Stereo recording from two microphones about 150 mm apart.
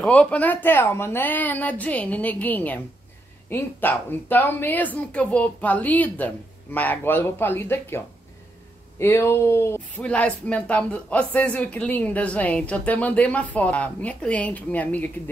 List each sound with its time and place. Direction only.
0.0 s speech: 10° left (ahead or behind)
9.0 s speech: 15° left (ahead or behind)